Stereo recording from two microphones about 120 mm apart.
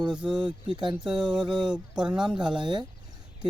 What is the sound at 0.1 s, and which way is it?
Speech, 5° right (ahead or behind).